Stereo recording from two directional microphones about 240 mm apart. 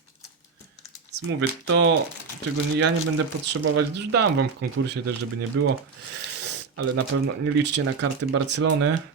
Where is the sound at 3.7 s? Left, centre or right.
Right.